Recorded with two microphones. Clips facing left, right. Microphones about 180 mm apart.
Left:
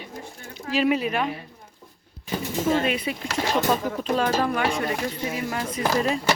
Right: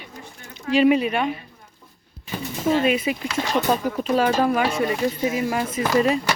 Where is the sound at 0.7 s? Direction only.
Centre (ahead or behind).